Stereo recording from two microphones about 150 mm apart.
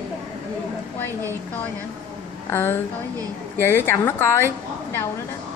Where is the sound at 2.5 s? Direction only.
15° left (ahead or behind).